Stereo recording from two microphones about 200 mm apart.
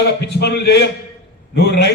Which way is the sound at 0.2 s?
55° left (ahead or behind).